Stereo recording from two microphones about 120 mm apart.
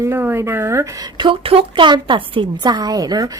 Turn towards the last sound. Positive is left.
turn(degrees=-30)  # may be behind; listen again after turning